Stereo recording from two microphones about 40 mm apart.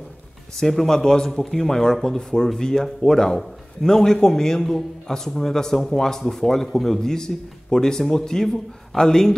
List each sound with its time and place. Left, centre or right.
0.6 s a man's voice: centre